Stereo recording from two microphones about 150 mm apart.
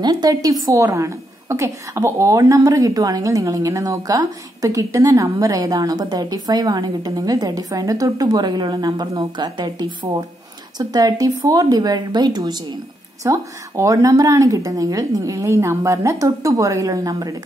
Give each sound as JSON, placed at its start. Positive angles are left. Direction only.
{"t": 0.0, "sound": "a woman's voice", "side_deg": -25}